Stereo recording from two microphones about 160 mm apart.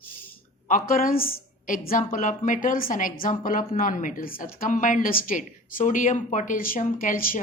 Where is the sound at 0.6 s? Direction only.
60° left (ahead or behind).